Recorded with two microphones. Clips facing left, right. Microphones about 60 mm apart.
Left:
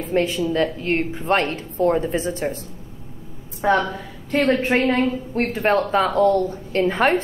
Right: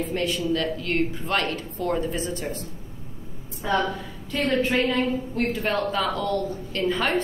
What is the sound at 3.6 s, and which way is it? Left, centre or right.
A woman's voice, left.